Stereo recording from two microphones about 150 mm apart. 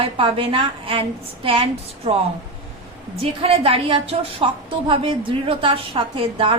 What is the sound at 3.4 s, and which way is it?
A woman's voice, 40° right (ahead or behind).